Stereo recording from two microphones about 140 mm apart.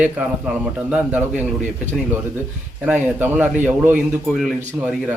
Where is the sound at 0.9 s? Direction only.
5° right (ahead or behind).